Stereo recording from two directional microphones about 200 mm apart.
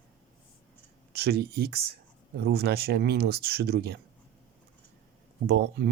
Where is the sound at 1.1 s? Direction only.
55° right (ahead or behind).